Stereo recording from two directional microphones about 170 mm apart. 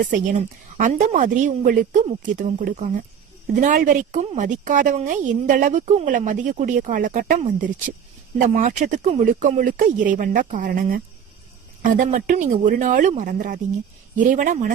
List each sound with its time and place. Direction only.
0.0 s a woman's voice: 50° right (ahead or behind)